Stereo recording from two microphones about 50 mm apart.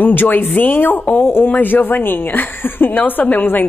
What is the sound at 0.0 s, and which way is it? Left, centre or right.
Speech, left.